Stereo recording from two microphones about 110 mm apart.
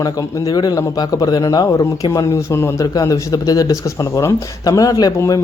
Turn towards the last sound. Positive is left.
turn(degrees=35)  # may be behind; listen again after turning